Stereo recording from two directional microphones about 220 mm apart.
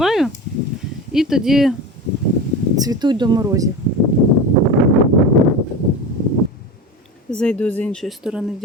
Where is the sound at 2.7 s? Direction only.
15° right (ahead or behind).